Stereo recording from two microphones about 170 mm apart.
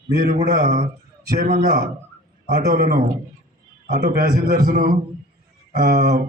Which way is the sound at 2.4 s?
65° right (ahead or behind).